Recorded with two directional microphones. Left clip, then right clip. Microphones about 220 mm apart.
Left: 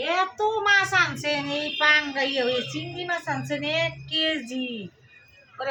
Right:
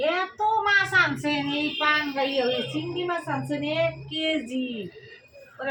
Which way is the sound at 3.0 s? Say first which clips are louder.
Left 4 dB; 35° left (ahead or behind).